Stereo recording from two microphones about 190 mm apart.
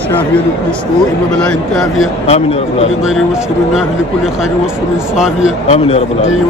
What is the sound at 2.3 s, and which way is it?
Speech, 35° left (ahead or behind).